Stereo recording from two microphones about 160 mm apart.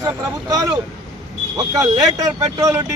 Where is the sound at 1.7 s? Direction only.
25° right (ahead or behind).